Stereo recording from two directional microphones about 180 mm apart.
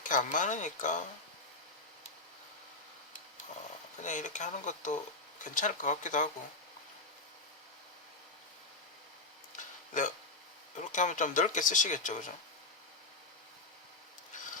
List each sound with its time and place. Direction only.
0.0 s speech: 45° left (ahead or behind)
4.0 s speech: 40° left (ahead or behind)
10.8 s speech: 45° left (ahead or behind)